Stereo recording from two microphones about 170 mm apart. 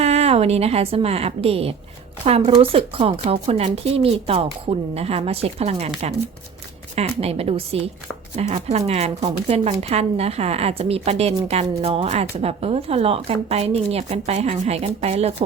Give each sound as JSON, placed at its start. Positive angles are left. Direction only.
{"t": 0.0, "sound": "a woman's voice", "side_deg": -40}
{"t": 6.9, "sound": "speech", "side_deg": -35}